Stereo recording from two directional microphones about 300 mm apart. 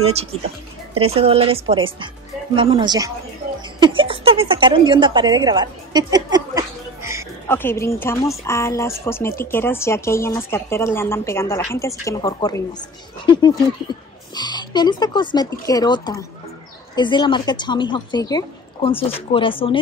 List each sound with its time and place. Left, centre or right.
0.9 s a woman's voice: centre
7.4 s speech: centre